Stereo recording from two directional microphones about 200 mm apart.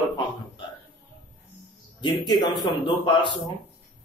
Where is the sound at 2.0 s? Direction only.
20° left (ahead or behind).